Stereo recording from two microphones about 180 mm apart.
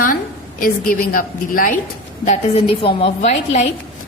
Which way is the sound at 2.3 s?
30° left (ahead or behind).